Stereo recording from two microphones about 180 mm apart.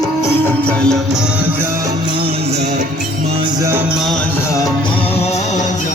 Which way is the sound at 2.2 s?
30° right (ahead or behind).